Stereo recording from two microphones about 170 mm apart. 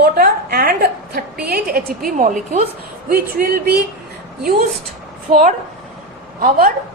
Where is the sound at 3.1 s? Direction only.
65° right (ahead or behind).